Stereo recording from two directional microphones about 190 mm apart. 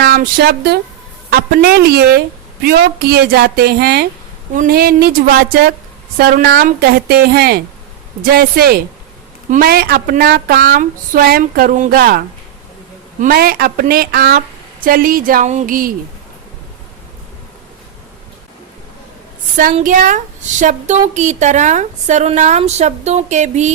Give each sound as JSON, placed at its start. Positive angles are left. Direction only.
{"t": 0.0, "sound": "a woman's voice", "side_deg": -50}
{"t": 13.2, "sound": "a woman's voice", "side_deg": -55}
{"t": 19.7, "sound": "speech", "side_deg": -40}